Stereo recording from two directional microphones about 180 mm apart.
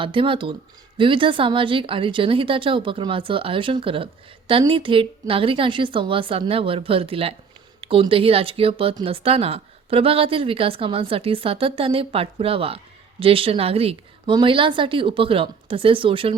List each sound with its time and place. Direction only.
0.0 s a woman's voice: 30° right (ahead or behind)